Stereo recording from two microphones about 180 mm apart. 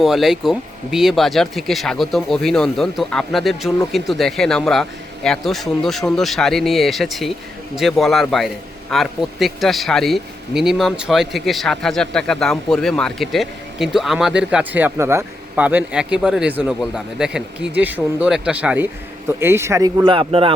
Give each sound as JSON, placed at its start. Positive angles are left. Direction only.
{"t": 0.0, "sound": "a man's voice", "side_deg": 0}